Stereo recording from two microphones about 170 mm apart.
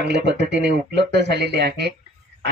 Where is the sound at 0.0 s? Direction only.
85° right.